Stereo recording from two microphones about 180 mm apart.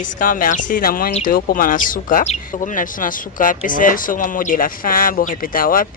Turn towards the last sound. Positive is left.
turn(degrees=50)  # may be behind; listen again after turning